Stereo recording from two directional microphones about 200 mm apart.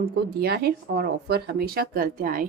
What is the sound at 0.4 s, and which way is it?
Speech, 50° right (ahead or behind).